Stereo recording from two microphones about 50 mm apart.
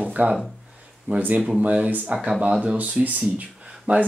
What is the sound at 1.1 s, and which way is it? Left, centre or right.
Speech, right.